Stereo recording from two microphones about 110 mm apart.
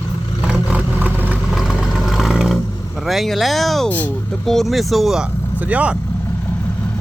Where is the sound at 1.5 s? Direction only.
5° right (ahead or behind).